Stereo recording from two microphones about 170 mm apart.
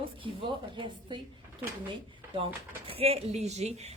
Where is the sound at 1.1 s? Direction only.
25° right (ahead or behind).